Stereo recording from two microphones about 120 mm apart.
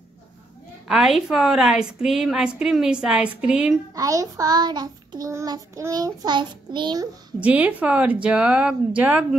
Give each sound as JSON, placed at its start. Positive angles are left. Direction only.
{"t": 0.8, "sound": "a woman's voice", "side_deg": -5}
{"t": 3.9, "sound": "child singing", "side_deg": -30}
{"t": 7.3, "sound": "speech", "side_deg": -10}